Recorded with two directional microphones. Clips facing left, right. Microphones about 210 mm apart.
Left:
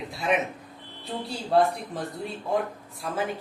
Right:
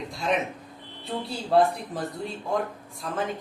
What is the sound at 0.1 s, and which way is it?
Smoke detector, 5° left (ahead or behind).